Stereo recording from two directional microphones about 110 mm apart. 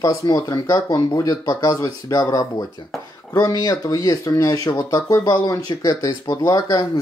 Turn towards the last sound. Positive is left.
turn(degrees=35)  # may be behind; listen again after turning